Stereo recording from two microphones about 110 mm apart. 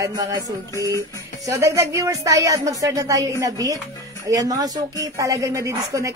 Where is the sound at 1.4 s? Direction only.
30° right (ahead or behind).